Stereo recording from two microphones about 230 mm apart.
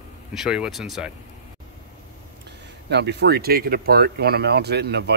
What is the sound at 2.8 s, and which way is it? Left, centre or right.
Speech, right.